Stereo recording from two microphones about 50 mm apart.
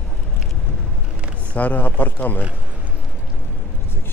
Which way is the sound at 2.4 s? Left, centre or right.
Right.